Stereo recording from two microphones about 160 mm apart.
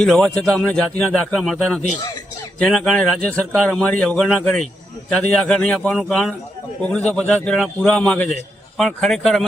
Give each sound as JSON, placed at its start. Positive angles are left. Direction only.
{"t": 0.0, "sound": "a man's voice", "side_deg": 5}